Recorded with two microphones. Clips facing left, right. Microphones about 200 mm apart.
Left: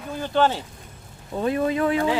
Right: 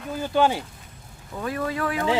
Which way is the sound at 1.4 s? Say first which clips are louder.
Left 5 dB; 25° left (ahead or behind).